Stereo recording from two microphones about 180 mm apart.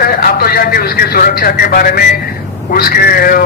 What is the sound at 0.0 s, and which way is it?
A man's voice, 55° left (ahead or behind).